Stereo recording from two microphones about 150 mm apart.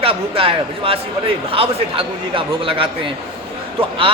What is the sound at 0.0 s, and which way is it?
A man's voice, 40° right (ahead or behind).